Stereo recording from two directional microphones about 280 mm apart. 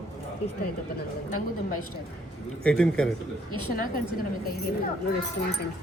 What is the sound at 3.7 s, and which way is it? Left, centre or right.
Speech, left.